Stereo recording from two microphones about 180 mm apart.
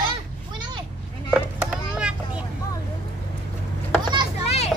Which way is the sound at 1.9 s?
5° right (ahead or behind).